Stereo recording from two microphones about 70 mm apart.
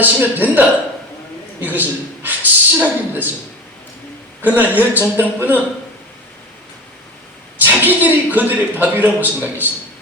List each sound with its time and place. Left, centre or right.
0.0 s a man's voice: right
1.6 s a man's voice: right
4.4 s a man's voice: right
7.6 s a man's voice: right